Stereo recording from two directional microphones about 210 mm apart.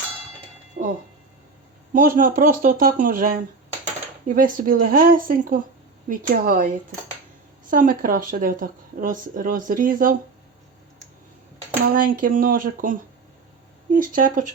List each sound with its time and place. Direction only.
0.8 s a sound: 45° right (ahead or behind)
1.9 s speech: 40° right (ahead or behind)
7.7 s speech: 40° right (ahead or behind)
11.9 s speech: 40° right (ahead or behind)